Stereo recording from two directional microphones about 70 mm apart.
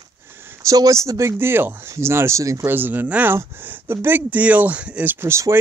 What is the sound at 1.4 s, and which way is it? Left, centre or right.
Speech, right.